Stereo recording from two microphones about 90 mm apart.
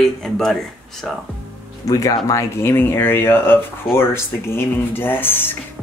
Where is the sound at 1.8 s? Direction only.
40° left (ahead or behind); by 5.5 s 25° left (ahead or behind).